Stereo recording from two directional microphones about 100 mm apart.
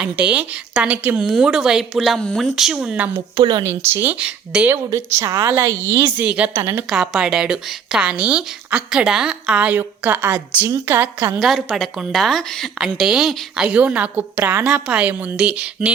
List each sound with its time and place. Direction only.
0.0 s a woman's voice: 15° right (ahead or behind)
3.3 s a woman's voice: 40° right (ahead or behind); by 4.8 s 15° right (ahead or behind)
4.9 s a woman's voice: 30° right (ahead or behind); by 6.5 s 10° right (ahead or behind)
6.5 s a woman's voice: 25° right (ahead or behind)
6.9 s a woman's voice: 5° right (ahead or behind); by 11.3 s 20° right (ahead or behind)
11.3 s a woman's voice: centre (ahead or behind)